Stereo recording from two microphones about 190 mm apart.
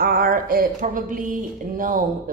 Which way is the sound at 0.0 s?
50° right (ahead or behind).